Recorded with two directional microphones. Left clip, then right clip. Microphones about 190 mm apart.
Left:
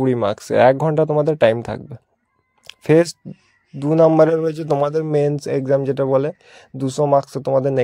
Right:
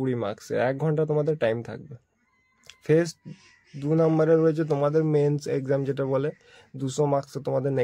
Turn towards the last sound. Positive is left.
turn(degrees=35)  # may be behind; listen again after turning